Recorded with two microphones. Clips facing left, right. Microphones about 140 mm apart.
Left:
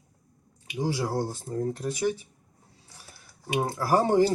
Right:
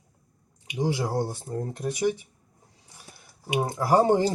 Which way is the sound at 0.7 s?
20° right (ahead or behind).